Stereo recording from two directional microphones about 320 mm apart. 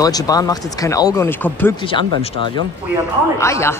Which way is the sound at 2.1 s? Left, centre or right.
Right.